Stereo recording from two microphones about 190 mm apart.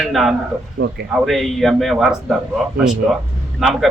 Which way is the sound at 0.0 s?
Centre (ahead or behind).